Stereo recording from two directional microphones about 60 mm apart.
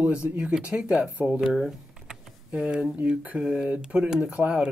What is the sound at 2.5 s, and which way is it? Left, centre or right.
Speech, centre.